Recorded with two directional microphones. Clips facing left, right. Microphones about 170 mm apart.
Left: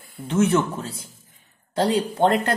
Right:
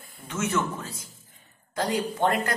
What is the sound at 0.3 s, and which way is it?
Speech, 30° left (ahead or behind).